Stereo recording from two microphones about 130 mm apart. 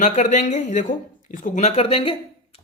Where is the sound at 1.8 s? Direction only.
45° left (ahead or behind).